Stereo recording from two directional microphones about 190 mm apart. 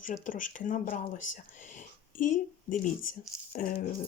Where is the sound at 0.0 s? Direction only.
45° left (ahead or behind).